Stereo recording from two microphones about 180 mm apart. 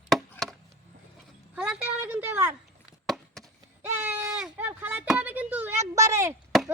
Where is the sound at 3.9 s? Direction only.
10° right (ahead or behind).